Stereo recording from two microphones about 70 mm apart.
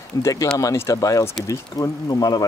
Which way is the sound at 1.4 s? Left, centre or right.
Left.